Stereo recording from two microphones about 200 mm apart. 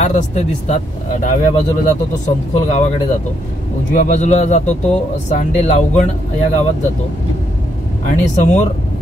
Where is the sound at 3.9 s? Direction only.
40° left (ahead or behind).